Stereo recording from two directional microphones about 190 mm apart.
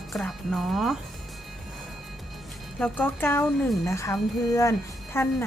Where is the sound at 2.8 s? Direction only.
10° left (ahead or behind).